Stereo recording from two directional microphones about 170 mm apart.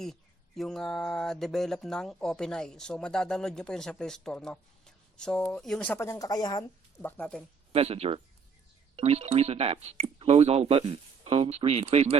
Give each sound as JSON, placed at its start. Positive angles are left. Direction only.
{"t": 0.0, "sound": "a sound", "side_deg": 0}
{"t": 7.0, "sound": "speech", "side_deg": 5}
{"t": 7.7, "sound": "speech", "side_deg": -35}